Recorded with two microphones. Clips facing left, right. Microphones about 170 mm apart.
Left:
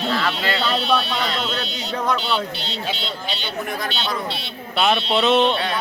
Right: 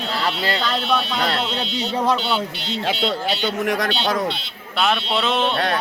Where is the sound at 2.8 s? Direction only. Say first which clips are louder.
Right 8 dB; 75° right (ahead or behind).